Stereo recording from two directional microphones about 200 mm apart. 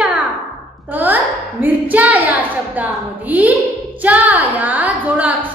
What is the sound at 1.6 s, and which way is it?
A woman's voice, 10° right (ahead or behind).